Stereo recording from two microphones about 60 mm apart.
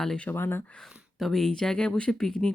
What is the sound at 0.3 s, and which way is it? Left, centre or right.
Speech, left.